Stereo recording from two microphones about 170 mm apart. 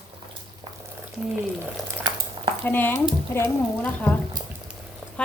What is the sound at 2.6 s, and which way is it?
Speech, 10° left (ahead or behind).